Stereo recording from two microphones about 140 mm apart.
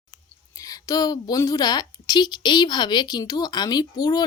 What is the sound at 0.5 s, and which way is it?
A woman's voice, 25° left (ahead or behind).